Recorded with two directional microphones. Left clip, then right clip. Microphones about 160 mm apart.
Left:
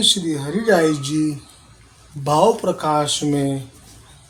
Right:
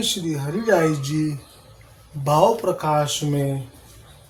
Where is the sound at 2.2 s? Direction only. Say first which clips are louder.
Left 1 dB; 15° left (ahead or behind).